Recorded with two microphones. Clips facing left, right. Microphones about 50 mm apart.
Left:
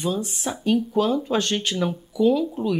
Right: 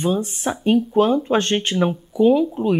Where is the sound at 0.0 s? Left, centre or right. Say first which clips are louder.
Right 5 dB; right.